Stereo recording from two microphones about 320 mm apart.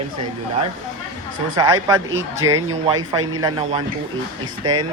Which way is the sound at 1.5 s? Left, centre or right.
Centre.